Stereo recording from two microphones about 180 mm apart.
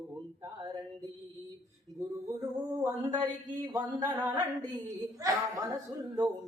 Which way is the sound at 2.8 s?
15° right (ahead or behind).